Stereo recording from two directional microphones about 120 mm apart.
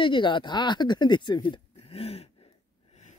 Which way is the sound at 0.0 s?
40° left (ahead or behind).